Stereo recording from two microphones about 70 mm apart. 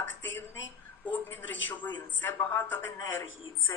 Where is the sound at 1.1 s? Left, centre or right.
Left.